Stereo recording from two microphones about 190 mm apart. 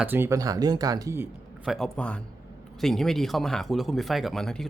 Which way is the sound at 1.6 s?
Centre (ahead or behind).